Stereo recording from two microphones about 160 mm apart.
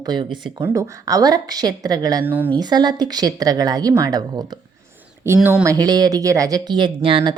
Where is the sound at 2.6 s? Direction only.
25° right (ahead or behind).